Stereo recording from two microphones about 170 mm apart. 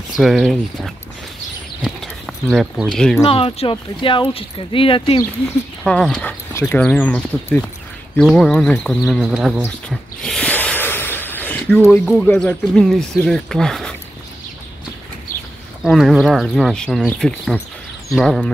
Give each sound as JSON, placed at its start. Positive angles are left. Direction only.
{"t": 0.2, "sound": "speech", "side_deg": 0}
{"t": 1.9, "sound": "a sound", "side_deg": 0}
{"t": 2.9, "sound": "speech", "side_deg": 5}
{"t": 3.3, "sound": "speech", "side_deg": 30}
{"t": 5.9, "sound": "speech", "side_deg": 5}
{"t": 9.8, "sound": "a sound", "side_deg": 5}
{"t": 12.4, "sound": "speech", "side_deg": 5}
{"t": 15.8, "sound": "speech", "side_deg": 0}